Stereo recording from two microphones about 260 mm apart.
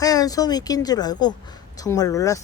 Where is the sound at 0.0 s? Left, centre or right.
Centre.